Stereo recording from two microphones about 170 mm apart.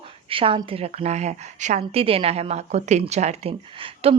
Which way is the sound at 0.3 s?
30° right (ahead or behind).